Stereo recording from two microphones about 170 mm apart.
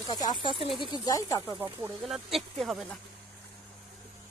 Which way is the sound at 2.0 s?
Centre (ahead or behind).